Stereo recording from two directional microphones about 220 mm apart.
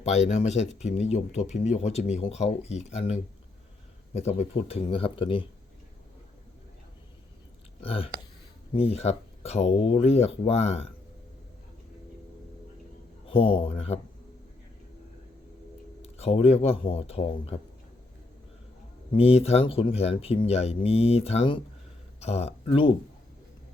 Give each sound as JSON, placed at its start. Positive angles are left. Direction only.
{"t": 0.0, "sound": "speech", "side_deg": 30}
{"t": 7.8, "sound": "speech", "side_deg": 25}
{"t": 13.2, "sound": "speech", "side_deg": 25}
{"t": 16.0, "sound": "speech", "side_deg": 30}
{"t": 19.1, "sound": "speech", "side_deg": 25}